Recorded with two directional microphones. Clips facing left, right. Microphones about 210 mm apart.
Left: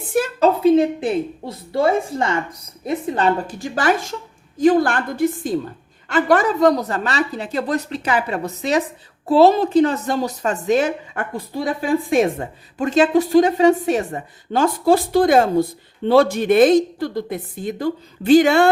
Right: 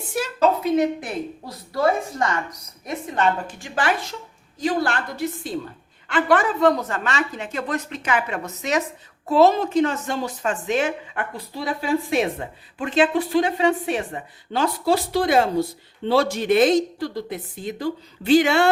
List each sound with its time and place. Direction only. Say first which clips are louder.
0.4 s a woman's voice: left 4 dB; 30° left (ahead or behind); by 18.7 s 50° left (ahead or behind)